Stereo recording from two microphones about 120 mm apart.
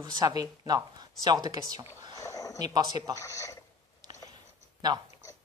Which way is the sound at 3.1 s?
25° left (ahead or behind).